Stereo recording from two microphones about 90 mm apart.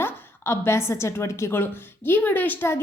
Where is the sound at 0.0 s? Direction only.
30° left (ahead or behind).